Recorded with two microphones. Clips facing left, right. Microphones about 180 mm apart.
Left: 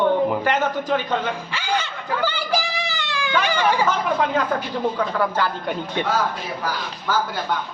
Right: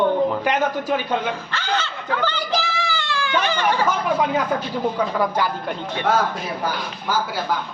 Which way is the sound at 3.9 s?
10° right (ahead or behind).